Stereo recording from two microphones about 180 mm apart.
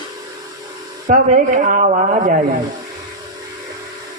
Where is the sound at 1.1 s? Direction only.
45° right (ahead or behind).